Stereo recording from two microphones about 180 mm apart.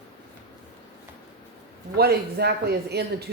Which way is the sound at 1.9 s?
60° right (ahead or behind).